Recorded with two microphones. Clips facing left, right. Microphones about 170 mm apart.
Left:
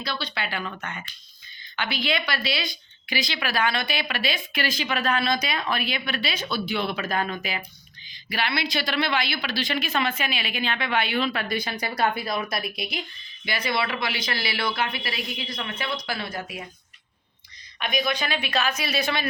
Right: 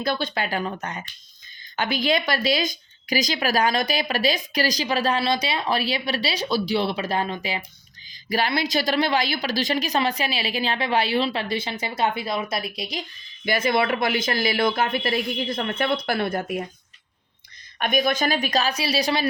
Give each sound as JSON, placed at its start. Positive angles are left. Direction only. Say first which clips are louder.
{"t": 0.0, "sound": "a woman's voice", "louder": "right 6 dB", "side_deg": -50}
{"t": 8.3, "sound": "a woman's voice", "louder": "right 4 dB", "side_deg": -40}
{"t": 13.4, "sound": "speech", "louder": "right 6 dB", "side_deg": -45}
{"t": 17.7, "sound": "a woman's voice", "louder": "right 5 dB", "side_deg": -50}